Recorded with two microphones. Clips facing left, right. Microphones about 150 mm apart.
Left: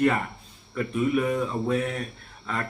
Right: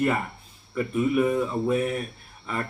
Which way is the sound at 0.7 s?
5° right (ahead or behind).